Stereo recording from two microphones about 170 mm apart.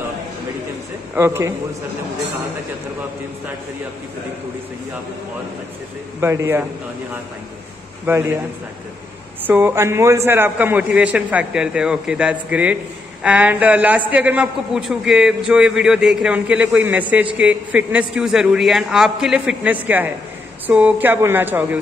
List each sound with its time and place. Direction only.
1.1 s a man's voice: 15° right (ahead or behind)
6.2 s a man's voice: 15° right (ahead or behind)
9.4 s a man's voice: 10° right (ahead or behind)